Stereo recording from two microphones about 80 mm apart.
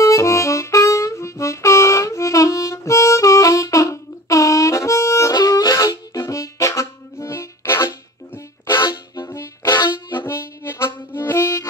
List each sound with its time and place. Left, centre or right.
0.0 s harmonica: left
5.3 s music: left
6.1 s music: left
8.6 s harmonica: left
9.3 s music: left
9.7 s harmonica: left
10.2 s harmonica: left